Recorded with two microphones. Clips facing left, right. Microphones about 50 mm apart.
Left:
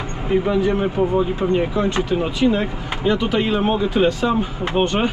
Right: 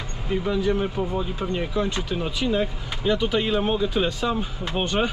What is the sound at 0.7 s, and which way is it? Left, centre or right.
Speech, left.